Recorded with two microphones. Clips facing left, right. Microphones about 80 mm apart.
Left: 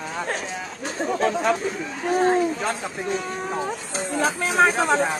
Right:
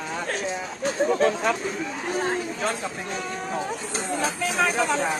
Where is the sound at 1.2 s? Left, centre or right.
Centre.